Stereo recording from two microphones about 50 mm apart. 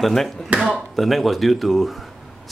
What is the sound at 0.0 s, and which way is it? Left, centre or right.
Speech, centre.